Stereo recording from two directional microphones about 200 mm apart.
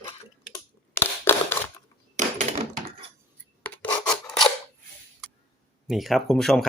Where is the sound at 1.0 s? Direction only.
10° left (ahead or behind).